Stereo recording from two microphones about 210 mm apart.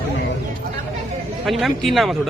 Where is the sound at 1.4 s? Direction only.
Centre (ahead or behind).